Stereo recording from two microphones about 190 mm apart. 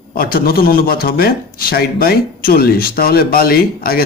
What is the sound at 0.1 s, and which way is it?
A man's voice, 50° left (ahead or behind).